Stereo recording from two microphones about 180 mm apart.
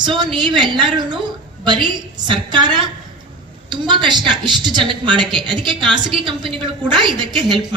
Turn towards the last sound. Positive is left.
turn(degrees=-25)  # may be behind; listen again after turning